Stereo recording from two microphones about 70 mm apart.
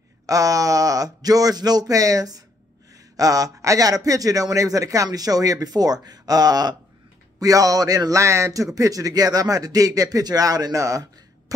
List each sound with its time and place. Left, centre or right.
0.3 s a man's voice: right
7.3 s a man's voice: right